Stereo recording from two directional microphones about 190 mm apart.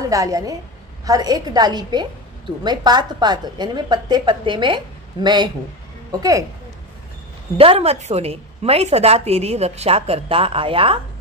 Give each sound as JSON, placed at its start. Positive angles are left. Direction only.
{"t": 0.0, "sound": "a woman's voice", "side_deg": -15}
{"t": 7.5, "sound": "a woman's voice", "side_deg": -30}